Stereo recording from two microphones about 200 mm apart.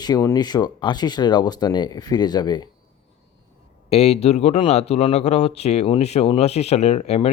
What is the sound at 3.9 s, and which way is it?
Speech, 30° left (ahead or behind).